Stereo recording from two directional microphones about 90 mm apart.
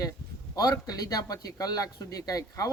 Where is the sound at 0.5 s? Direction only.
45° left (ahead or behind).